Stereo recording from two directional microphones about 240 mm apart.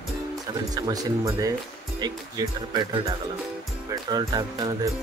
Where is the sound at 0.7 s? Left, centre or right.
Centre.